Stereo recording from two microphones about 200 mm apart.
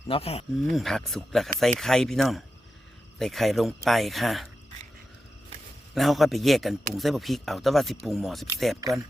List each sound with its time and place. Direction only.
0.1 s speech: 30° left (ahead or behind)
0.7 s speech: centre (ahead or behind)
5.9 s speech: centre (ahead or behind)